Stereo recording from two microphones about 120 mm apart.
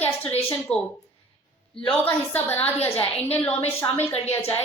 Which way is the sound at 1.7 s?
5° left (ahead or behind).